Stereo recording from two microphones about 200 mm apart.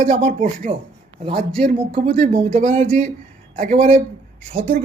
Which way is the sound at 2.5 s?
40° right (ahead or behind).